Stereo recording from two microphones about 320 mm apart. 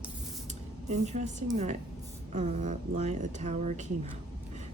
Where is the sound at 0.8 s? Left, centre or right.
Right.